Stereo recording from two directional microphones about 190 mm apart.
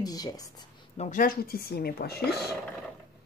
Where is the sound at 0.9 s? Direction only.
40° left (ahead or behind); by 2.2 s 55° left (ahead or behind).